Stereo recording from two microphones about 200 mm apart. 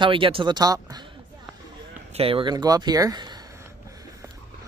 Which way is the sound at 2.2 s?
25° right (ahead or behind).